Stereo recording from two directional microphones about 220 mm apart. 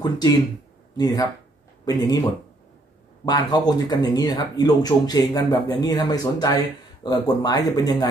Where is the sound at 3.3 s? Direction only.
15° left (ahead or behind).